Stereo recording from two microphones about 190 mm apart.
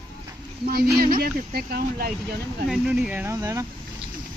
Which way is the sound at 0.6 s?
55° right (ahead or behind).